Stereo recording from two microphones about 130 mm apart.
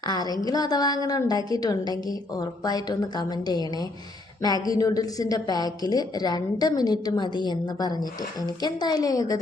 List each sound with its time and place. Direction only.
0.0 s a woman's voice: 30° left (ahead or behind)